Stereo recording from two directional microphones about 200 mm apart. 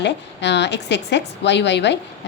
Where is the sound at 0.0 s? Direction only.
60° left (ahead or behind).